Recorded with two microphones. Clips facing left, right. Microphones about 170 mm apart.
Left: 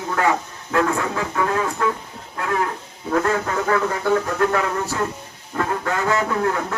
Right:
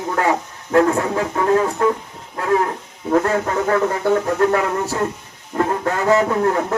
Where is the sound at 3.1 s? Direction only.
35° right (ahead or behind).